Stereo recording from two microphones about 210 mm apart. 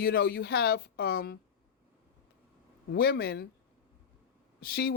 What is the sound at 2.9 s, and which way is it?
Speech, 50° left (ahead or behind).